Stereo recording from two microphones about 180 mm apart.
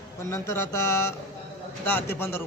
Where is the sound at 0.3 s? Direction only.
15° left (ahead or behind).